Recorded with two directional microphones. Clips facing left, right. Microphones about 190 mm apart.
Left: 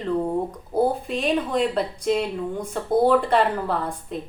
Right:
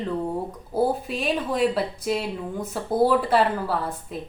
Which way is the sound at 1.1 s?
5° right (ahead or behind).